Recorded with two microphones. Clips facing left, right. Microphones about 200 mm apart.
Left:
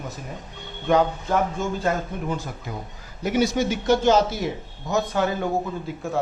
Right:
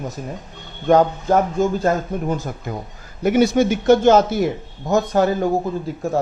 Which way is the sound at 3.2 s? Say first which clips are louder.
Right 6 dB; 55° right (ahead or behind).